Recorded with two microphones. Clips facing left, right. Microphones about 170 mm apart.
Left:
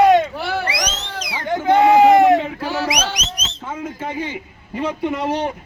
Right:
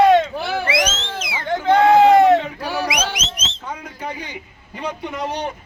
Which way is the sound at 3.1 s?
25° right (ahead or behind).